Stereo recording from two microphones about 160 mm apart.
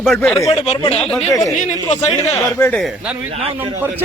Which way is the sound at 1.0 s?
Centre (ahead or behind).